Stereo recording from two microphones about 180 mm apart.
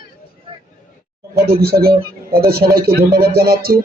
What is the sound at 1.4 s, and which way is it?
Speech, 55° right (ahead or behind).